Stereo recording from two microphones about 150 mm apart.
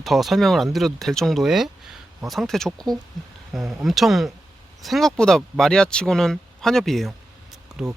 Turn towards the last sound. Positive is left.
turn(degrees=-5)  # may be behind; listen again after turning